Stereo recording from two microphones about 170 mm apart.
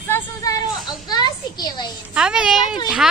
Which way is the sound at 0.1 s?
20° left (ahead or behind).